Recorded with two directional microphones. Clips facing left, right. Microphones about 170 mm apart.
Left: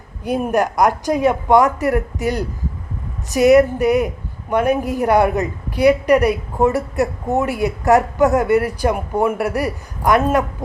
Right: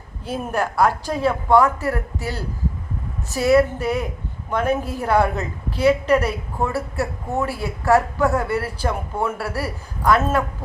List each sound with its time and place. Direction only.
0.3 s a woman's voice: 15° left (ahead or behind)